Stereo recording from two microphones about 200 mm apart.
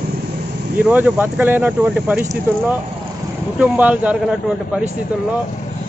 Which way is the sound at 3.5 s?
5° right (ahead or behind).